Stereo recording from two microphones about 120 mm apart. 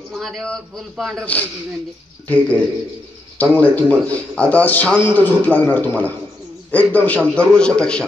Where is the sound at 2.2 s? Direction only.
10° left (ahead or behind).